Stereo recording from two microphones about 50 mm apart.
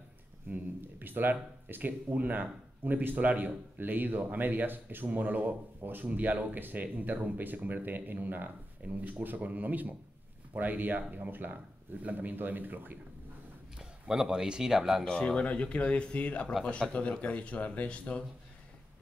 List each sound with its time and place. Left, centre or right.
0.5 s speech: right
13.7 s speech: centre
15.0 s speech: centre